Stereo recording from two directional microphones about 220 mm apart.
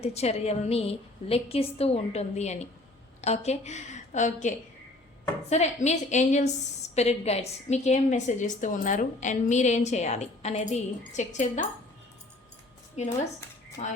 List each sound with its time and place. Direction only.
0.0 s a woman's voice: 30° left (ahead or behind)
13.0 s a woman's voice: 30° left (ahead or behind)